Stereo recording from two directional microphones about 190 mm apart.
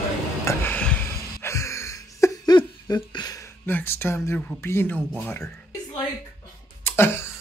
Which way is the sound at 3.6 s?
10° left (ahead or behind).